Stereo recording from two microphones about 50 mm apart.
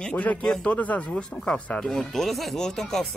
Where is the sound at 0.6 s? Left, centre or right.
Left; by 3.1 s centre.